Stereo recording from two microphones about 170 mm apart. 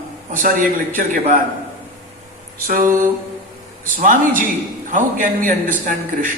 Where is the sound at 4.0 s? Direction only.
50° right (ahead or behind).